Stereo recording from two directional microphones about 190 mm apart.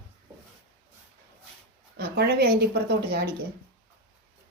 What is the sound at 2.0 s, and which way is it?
Speech, 60° right (ahead or behind).